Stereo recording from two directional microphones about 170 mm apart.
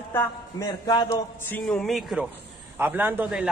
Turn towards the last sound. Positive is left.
turn(degrees=-10)  # may be behind; listen again after turning